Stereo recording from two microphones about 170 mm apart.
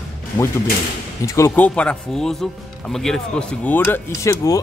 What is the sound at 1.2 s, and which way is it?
Speech, 20° left (ahead or behind).